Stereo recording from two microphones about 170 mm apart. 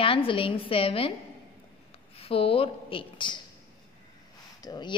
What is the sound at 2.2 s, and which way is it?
A woman's voice, 35° left (ahead or behind).